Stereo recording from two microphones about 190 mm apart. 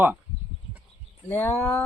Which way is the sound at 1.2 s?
15° left (ahead or behind).